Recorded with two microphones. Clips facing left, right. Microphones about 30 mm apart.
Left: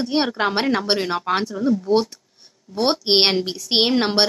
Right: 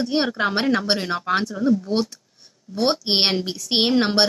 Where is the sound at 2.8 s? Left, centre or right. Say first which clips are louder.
Left 2 dB; centre.